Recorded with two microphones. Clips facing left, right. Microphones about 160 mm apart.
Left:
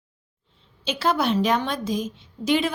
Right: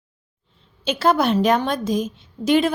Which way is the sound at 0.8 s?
50° right (ahead or behind).